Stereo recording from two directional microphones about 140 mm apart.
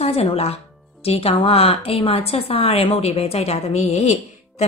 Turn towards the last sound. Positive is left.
turn(degrees=50)  # may be behind; listen again after turning